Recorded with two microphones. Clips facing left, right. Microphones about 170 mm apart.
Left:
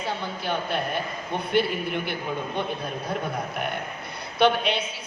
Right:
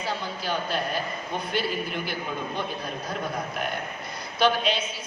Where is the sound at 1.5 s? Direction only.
60° left (ahead or behind).